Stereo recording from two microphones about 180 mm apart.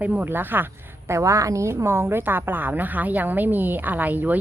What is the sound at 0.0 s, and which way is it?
A woman's voice, 10° right (ahead or behind).